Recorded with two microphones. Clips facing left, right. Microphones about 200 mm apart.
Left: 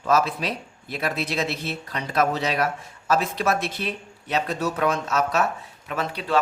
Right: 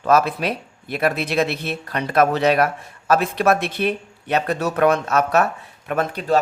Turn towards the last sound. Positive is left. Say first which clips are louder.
# right 6 dB
turn(degrees=-45)  # may be behind; listen again after turning